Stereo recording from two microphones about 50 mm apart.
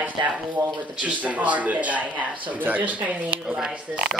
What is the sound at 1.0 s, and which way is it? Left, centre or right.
Speech, right.